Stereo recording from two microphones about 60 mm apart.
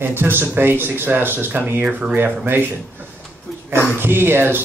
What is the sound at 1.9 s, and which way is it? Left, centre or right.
Speech, right.